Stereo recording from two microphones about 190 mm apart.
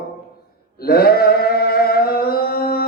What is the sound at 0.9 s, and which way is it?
Singing, 55° left (ahead or behind).